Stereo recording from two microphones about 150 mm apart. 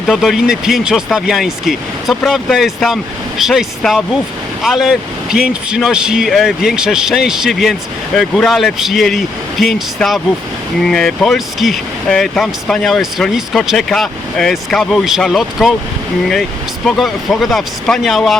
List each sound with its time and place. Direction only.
0.1 s speech: centre (ahead or behind)